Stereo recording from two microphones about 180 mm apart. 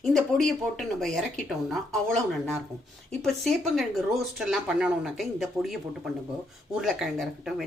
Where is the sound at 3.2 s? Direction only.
Centre (ahead or behind).